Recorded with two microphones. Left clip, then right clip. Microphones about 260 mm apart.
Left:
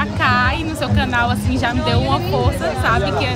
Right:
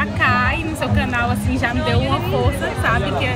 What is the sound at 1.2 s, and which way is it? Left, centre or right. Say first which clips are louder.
Speech: left 2 dB; centre.